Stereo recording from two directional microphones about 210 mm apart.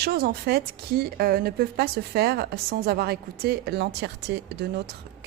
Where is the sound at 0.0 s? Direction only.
50° right (ahead or behind).